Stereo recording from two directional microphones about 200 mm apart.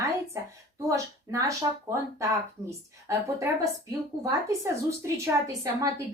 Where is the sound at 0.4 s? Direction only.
15° right (ahead or behind).